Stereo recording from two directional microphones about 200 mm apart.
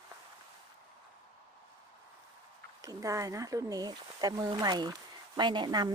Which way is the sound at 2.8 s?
15° right (ahead or behind).